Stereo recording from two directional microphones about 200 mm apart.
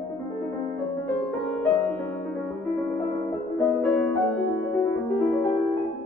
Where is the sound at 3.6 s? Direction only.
Centre (ahead or behind).